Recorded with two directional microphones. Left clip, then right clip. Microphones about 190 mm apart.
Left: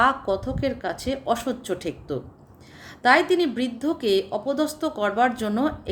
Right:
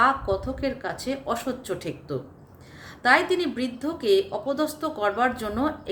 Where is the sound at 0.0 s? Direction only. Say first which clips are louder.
Left 1 dB; 50° left (ahead or behind).